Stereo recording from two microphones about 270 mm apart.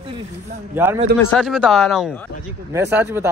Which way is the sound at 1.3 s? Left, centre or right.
Centre.